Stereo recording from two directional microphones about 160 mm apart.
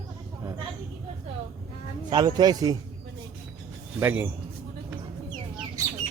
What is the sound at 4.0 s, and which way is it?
Speech, 15° right (ahead or behind).